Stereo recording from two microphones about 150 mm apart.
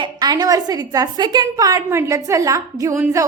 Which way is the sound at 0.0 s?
25° right (ahead or behind).